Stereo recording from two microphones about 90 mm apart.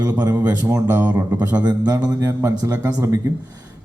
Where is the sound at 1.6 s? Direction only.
50° right (ahead or behind).